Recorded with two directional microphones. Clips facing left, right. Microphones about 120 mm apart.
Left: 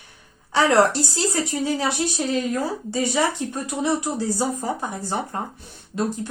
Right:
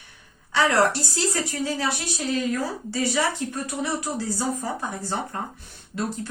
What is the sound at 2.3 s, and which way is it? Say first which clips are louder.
Speech: left 2 dB; 25° left (ahead or behind).